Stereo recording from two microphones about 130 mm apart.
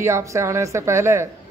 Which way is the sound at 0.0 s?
20° right (ahead or behind).